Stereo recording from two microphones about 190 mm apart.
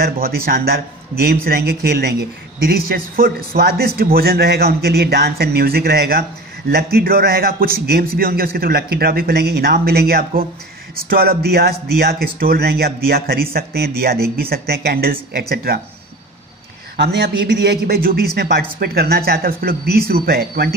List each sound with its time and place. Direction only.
0.0 s a man's voice: 55° right (ahead or behind)
16.9 s a man's voice: 60° right (ahead or behind)